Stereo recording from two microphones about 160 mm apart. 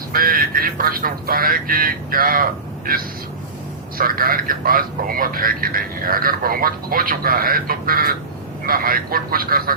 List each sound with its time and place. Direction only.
0.1 s a man's voice: 65° right (ahead or behind)